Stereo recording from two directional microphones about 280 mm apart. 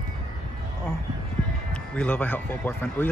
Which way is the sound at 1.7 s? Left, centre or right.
Centre.